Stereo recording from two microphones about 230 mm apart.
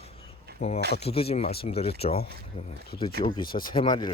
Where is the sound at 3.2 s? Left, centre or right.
Left.